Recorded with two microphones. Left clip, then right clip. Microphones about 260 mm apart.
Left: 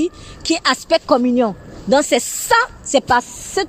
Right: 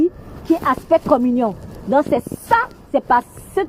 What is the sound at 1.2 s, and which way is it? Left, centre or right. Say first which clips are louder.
Speech: left 2 dB; centre.